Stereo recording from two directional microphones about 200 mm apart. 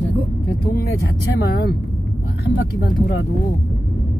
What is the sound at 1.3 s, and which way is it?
Speech, 50° left (ahead or behind).